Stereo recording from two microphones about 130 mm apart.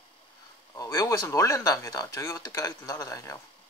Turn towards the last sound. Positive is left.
turn(degrees=25)  # may be behind; listen again after turning